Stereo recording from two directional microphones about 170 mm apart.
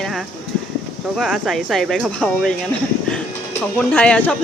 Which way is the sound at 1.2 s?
Centre (ahead or behind).